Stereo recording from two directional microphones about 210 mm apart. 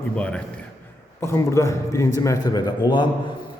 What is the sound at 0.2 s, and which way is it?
A man's voice, 5° left (ahead or behind).